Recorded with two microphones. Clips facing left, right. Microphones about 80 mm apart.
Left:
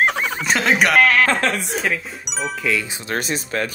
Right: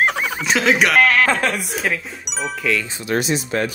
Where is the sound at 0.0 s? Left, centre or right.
Centre.